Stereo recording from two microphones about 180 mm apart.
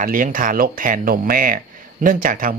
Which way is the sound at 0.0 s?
50° right (ahead or behind).